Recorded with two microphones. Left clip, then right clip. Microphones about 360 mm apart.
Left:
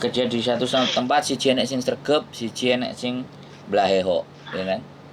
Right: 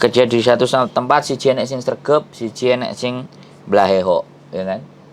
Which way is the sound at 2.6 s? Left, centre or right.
Right.